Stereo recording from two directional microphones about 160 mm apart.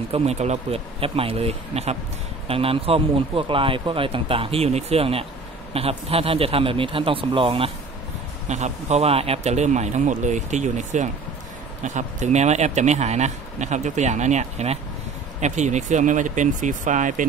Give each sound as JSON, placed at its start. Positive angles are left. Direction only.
{"t": 0.1, "sound": "speech", "side_deg": -40}
{"t": 8.5, "sound": "speech", "side_deg": -45}